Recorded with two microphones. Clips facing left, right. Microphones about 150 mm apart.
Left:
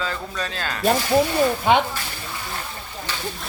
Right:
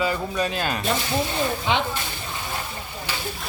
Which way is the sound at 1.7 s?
50° left (ahead or behind).